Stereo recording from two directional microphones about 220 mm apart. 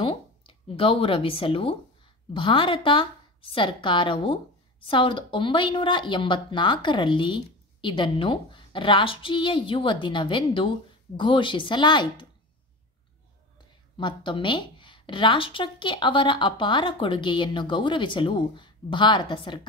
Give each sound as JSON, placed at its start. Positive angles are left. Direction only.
{"t": 0.0, "sound": "a woman's voice", "side_deg": 25}
{"t": 13.9, "sound": "a woman's voice", "side_deg": 20}